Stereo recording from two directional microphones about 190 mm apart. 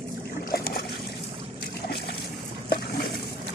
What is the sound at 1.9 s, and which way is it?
Boat, 60° left (ahead or behind).